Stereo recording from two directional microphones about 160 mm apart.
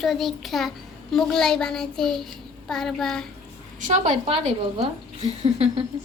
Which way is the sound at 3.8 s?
50° right (ahead or behind).